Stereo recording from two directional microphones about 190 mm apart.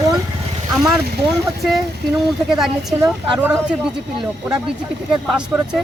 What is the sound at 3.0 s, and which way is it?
Speech, 15° right (ahead or behind).